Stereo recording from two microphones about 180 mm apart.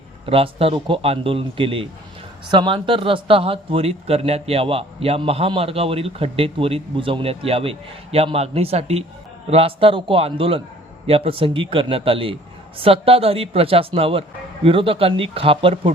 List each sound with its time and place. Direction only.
0.3 s speech: 30° right (ahead or behind)